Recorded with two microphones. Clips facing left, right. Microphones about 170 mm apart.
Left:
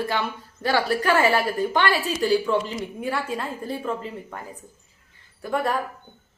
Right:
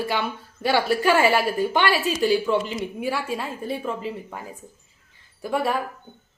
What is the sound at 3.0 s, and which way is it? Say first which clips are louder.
A woman's voice: even; 5° right (ahead or behind).